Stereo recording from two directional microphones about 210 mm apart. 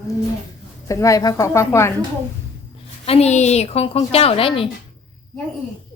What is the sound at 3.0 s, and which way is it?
A woman's voice, 30° left (ahead or behind).